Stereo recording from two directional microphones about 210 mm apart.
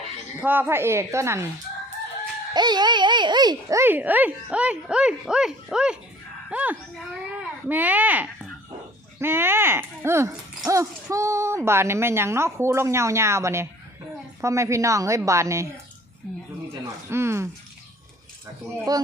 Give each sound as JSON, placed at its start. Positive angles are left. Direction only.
{"t": 0.4, "sound": "speech", "side_deg": -10}
{"t": 2.5, "sound": "speech", "side_deg": -20}
{"t": 16.8, "sound": "a sound", "side_deg": -10}
{"t": 18.9, "sound": "speech", "side_deg": -20}